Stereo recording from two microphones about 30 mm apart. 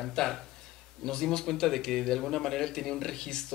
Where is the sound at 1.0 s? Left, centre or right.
Centre.